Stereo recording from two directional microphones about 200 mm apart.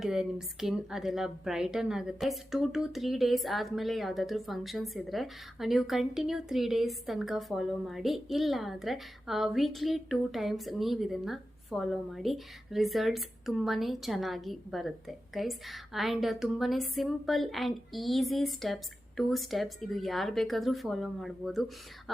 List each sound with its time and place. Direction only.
0.0 s speech: 5° right (ahead or behind)